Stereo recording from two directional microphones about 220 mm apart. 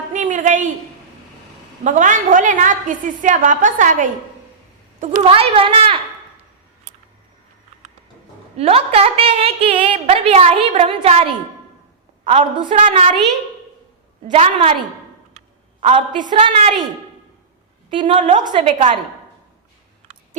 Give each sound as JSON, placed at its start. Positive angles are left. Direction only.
{"t": 0.1, "sound": "a sound", "side_deg": -35}
{"t": 1.8, "sound": "a woman's voice", "side_deg": -35}
{"t": 8.5, "sound": "a woman's voice", "side_deg": -25}
{"t": 14.3, "sound": "a woman's voice", "side_deg": -25}
{"t": 15.3, "sound": "a sound", "side_deg": -30}
{"t": 16.5, "sound": "a woman's voice", "side_deg": -25}
{"t": 17.9, "sound": "a woman's voice", "side_deg": -25}